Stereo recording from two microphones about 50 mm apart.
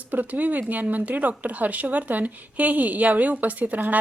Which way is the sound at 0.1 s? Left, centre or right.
Right.